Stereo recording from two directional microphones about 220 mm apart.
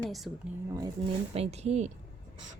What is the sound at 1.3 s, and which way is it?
Speech, 30° right (ahead or behind).